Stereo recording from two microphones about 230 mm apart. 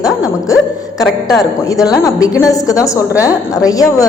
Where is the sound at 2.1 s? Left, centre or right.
Centre.